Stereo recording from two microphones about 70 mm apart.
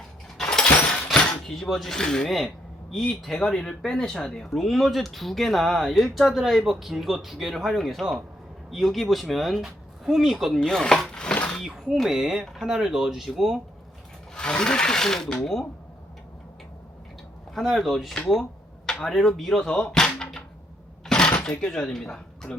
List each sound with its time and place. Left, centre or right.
0.3 s breaking: centre
1.5 s speech: centre
10.6 s speech: centre
11.1 s a sound: centre
11.6 s speech: centre
14.3 s speech: centre
17.5 s speech: centre
20.1 s a sound: centre
21.6 s speech: centre